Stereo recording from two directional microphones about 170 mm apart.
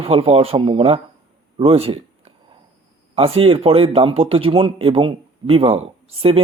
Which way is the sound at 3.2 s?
35° right (ahead or behind).